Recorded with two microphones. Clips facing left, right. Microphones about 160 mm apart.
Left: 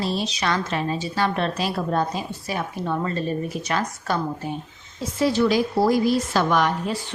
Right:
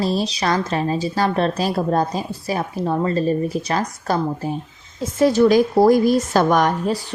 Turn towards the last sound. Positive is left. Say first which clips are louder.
# right 4 dB
turn(degrees=-40)  # may be behind; listen again after turning